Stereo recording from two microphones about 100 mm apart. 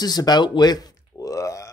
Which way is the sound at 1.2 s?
35° left (ahead or behind).